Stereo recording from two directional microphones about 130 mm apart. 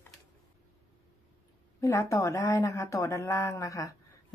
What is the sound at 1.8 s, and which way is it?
Speech, 20° left (ahead or behind).